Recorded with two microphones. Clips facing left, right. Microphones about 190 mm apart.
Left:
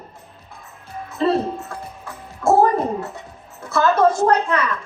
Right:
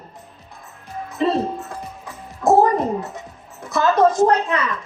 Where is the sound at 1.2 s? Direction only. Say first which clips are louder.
Left 1 dB; 15° right (ahead or behind).